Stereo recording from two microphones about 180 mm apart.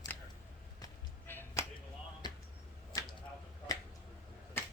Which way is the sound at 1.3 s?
10° left (ahead or behind).